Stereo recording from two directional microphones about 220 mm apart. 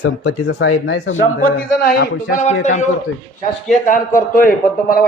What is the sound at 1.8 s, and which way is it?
Speech, 45° left (ahead or behind).